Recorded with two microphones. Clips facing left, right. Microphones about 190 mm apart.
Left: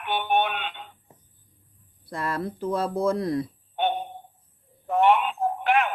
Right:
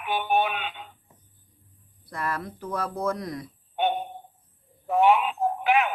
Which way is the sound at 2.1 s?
25° left (ahead or behind).